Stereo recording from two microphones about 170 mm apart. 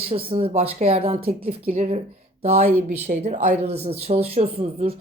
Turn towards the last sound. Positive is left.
turn(degrees=-35)  # may be behind; listen again after turning